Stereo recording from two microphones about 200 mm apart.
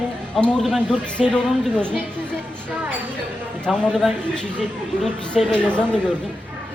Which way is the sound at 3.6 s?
5° left (ahead or behind).